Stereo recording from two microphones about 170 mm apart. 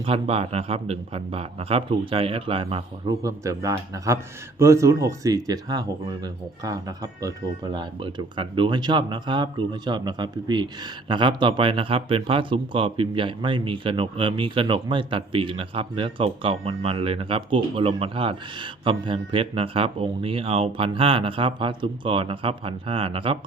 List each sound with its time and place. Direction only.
0.0 s speech: 35° right (ahead or behind)
3.2 s a man's voice: 20° right (ahead or behind)